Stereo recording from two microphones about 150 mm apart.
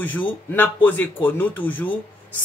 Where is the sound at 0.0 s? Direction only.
10° left (ahead or behind).